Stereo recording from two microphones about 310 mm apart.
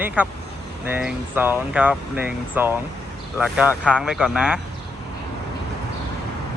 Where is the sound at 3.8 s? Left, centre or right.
Centre.